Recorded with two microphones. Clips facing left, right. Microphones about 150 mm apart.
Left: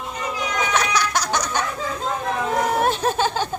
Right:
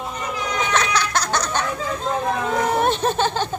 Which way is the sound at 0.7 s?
10° left (ahead or behind).